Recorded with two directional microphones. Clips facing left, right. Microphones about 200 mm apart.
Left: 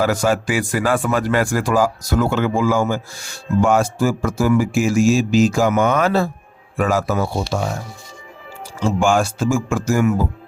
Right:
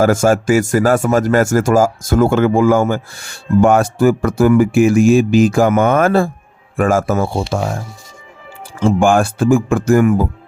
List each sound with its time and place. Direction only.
0.0 s speech: 45° right (ahead or behind)
8.8 s speech: 55° right (ahead or behind)